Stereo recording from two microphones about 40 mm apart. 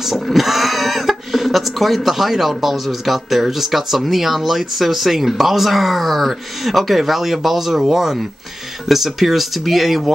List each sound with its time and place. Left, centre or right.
0.0 s speech: centre